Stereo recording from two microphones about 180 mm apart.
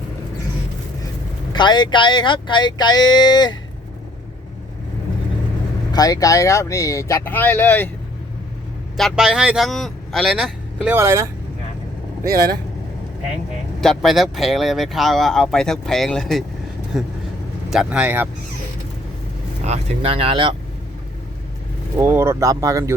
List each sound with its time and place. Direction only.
1.5 s speech: 25° left (ahead or behind)
5.9 s speech: 20° left (ahead or behind)
9.0 s a man's voice: centre (ahead or behind)
10.9 s speech: 15° right (ahead or behind)
13.8 s speech: centre (ahead or behind)
19.6 s speech: 35° right (ahead or behind)
21.9 s speech: 15° right (ahead or behind)